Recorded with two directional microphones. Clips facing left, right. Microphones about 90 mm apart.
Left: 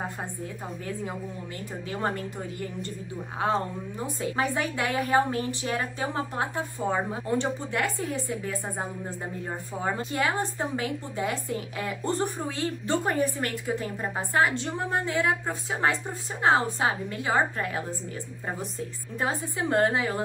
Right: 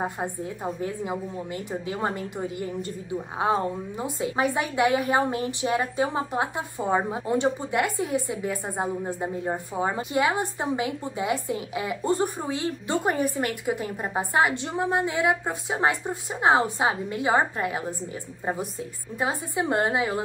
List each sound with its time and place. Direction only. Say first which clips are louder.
0.7 s a woman's voice: right 4 dB; 20° right (ahead or behind)